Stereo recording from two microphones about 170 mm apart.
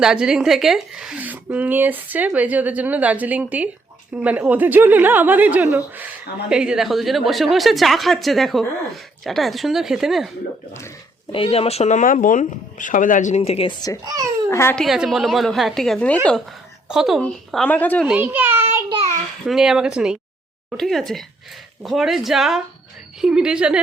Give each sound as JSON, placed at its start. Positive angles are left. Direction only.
{"t": 0.0, "sound": "a woman's voice", "side_deg": -5}
{"t": 11.3, "sound": "speech", "side_deg": 30}
{"t": 14.0, "sound": "speech", "side_deg": -20}
{"t": 14.5, "sound": "speech", "side_deg": 15}
{"t": 14.8, "sound": "a woman's voice", "side_deg": 0}
{"t": 16.9, "sound": "a woman's voice", "side_deg": 0}
{"t": 18.1, "sound": "a woman's voice", "side_deg": -10}